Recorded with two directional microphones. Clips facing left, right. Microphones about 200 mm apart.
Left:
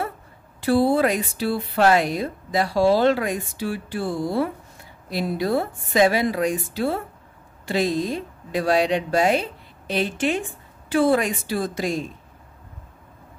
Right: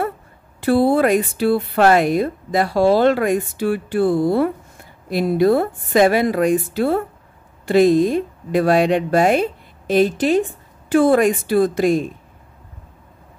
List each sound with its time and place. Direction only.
0.6 s speech: 55° right (ahead or behind)